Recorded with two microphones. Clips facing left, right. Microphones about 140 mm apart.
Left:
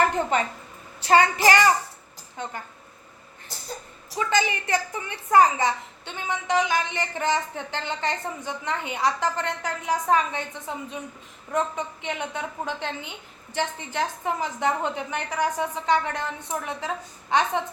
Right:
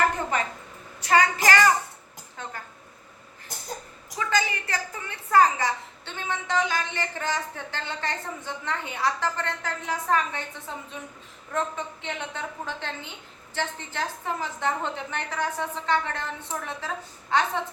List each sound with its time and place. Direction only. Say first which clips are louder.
0.3 s child singing: left 3 dB; 25° left (ahead or behind)
2.4 s a woman's voice: left 4 dB; 20° left (ahead or behind)
4.2 s a woman's voice: left 3 dB; 20° left (ahead or behind)